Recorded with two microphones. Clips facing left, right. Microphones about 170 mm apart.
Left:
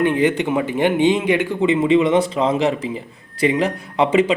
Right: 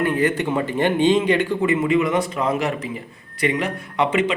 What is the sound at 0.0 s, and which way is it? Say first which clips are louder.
A man's voice: left 3 dB; 20° left (ahead or behind).